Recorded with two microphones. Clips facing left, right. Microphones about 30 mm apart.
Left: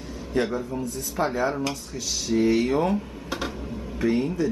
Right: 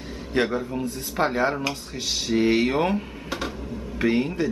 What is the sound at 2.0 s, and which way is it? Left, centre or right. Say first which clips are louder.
Speech: right 1 dB; right.